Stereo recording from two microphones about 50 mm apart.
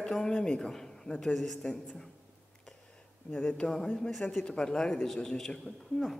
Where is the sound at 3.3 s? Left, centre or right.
Left.